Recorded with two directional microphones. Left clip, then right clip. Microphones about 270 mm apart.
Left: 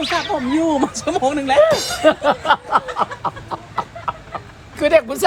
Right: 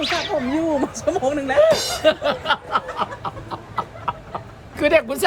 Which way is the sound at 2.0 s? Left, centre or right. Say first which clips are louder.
Left 4 dB; centre.